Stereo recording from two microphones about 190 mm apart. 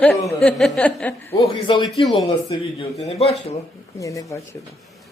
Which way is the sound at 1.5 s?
25° left (ahead or behind).